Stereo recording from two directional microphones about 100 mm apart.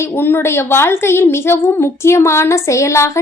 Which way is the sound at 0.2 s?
20° left (ahead or behind).